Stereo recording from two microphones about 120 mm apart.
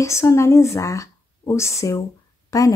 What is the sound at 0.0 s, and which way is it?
A woman's voice, 25° left (ahead or behind).